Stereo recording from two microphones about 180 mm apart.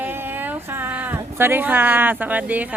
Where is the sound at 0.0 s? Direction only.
10° right (ahead or behind).